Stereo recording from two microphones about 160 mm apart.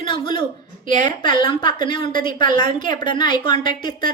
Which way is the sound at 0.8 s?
50° right (ahead or behind).